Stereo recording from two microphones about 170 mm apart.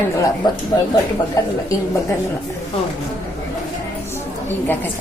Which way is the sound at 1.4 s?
20° left (ahead or behind).